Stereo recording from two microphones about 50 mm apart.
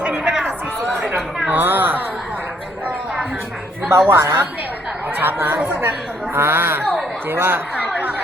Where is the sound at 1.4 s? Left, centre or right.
Right.